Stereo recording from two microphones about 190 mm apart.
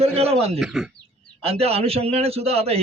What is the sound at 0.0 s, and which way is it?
Speech, 30° right (ahead or behind).